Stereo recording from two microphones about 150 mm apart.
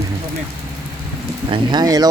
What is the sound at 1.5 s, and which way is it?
Speech, 30° right (ahead or behind).